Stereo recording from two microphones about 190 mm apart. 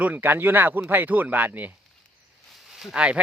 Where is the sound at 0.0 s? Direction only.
10° right (ahead or behind).